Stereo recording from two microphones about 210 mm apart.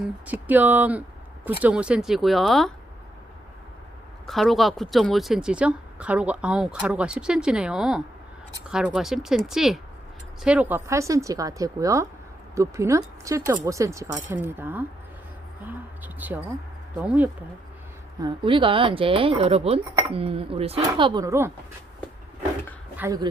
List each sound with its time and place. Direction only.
0.3 s a woman's voice: 10° right (ahead or behind)
4.3 s a woman's voice: centre (ahead or behind)
16.1 s speech: 10° right (ahead or behind)
18.2 s speech: 25° right (ahead or behind)
23.0 s speech: 15° right (ahead or behind)